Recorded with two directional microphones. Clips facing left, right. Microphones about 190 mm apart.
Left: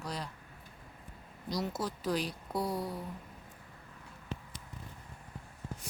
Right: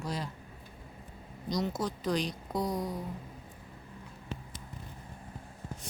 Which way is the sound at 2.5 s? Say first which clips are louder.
Right 1 dB; 15° right (ahead or behind).